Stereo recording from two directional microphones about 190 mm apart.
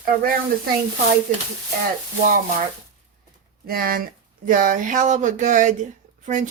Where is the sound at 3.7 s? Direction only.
50° right (ahead or behind).